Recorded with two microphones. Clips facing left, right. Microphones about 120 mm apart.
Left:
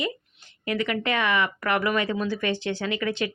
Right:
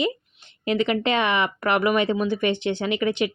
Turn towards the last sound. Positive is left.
turn(degrees=-20)  # may be behind; listen again after turning